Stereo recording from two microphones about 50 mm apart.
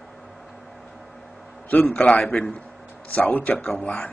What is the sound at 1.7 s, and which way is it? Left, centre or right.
A man's voice, left.